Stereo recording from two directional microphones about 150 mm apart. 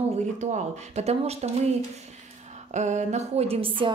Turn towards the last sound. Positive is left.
turn(degrees=-35)  # may be behind; listen again after turning